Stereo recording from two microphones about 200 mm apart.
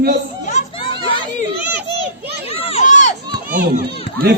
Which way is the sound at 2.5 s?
35° left (ahead or behind).